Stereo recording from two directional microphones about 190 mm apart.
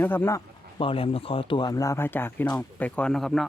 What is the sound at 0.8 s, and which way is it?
A woman's voice, 30° left (ahead or behind).